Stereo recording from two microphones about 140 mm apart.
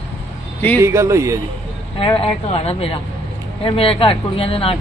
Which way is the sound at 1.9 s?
40° left (ahead or behind).